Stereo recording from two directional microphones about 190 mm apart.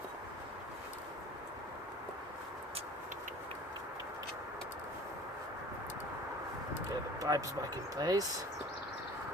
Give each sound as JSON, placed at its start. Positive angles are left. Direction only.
{"t": 7.2, "sound": "speech", "side_deg": -20}